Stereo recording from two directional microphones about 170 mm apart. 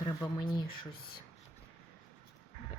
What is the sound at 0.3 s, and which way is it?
Speech, 25° left (ahead or behind).